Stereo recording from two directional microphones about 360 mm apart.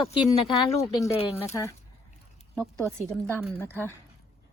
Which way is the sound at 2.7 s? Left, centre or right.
Centre.